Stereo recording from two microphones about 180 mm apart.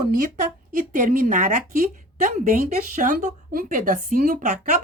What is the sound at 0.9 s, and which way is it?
A woman's voice, 50° right (ahead or behind).